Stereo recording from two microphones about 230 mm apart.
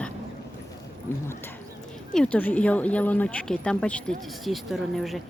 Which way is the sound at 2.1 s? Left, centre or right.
Centre.